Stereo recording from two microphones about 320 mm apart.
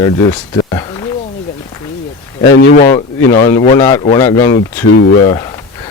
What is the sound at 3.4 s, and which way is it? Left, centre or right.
Speech, centre.